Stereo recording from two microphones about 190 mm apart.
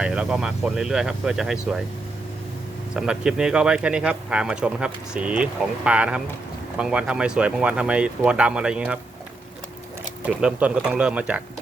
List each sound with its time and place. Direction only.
0.0 s speech: 5° right (ahead or behind)
2.9 s speech: 5° right (ahead or behind)
10.2 s speech: 5° right (ahead or behind)